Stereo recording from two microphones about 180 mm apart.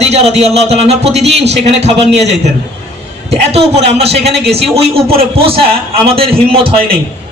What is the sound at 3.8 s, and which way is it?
A man's voice, 35° right (ahead or behind).